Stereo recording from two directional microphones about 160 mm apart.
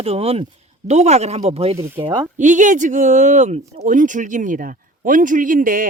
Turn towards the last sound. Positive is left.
turn(degrees=-60)  # may be behind; listen again after turning